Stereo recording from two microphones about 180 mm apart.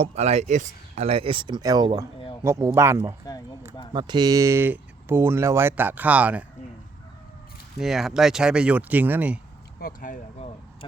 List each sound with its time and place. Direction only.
0.0 s speech: 35° right (ahead or behind); by 3.2 s 15° right (ahead or behind)
3.2 s speech: 20° left (ahead or behind)
3.9 s speech: 25° right (ahead or behind); by 6.4 s 10° right (ahead or behind)
7.8 s speech: centre (ahead or behind)
9.8 s speech: 45° left (ahead or behind)